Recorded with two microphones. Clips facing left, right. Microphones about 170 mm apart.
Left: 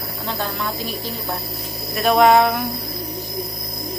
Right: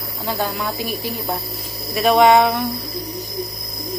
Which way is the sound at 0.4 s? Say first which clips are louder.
Right 2 dB; 10° right (ahead or behind).